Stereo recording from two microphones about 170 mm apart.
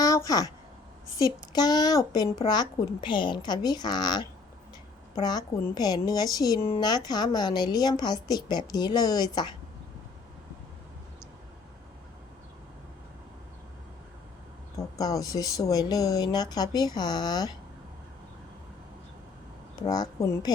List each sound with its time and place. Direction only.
0.0 s a woman's voice: 20° left (ahead or behind)
14.9 s a woman's voice: 20° left (ahead or behind)
19.7 s a woman's voice: 25° left (ahead or behind)